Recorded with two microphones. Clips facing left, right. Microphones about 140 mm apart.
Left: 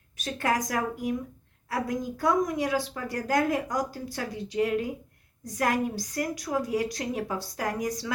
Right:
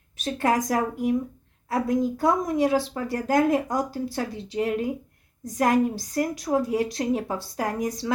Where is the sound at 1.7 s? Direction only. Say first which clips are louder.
Right 6 dB; 25° right (ahead or behind).